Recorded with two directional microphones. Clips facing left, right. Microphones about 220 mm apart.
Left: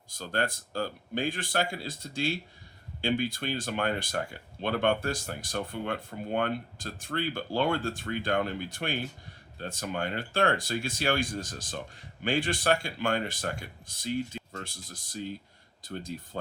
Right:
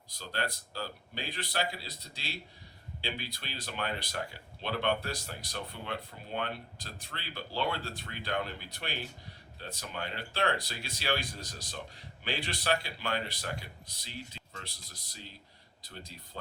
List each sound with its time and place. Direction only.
0.1 s speech: 50° left (ahead or behind)